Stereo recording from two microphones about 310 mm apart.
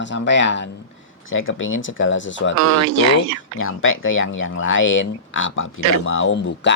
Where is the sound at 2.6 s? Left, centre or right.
Right.